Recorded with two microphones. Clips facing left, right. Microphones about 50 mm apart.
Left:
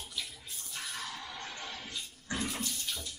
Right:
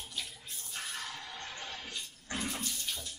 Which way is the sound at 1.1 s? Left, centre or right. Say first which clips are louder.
Left 1 dB; centre.